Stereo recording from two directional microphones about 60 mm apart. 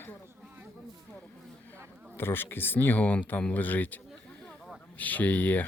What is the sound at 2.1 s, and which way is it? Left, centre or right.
A man's voice, left.